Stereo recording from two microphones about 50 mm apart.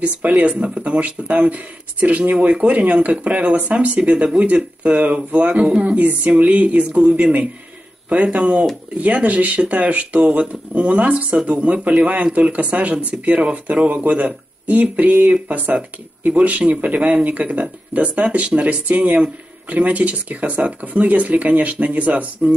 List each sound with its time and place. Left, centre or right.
0.0 s speech: right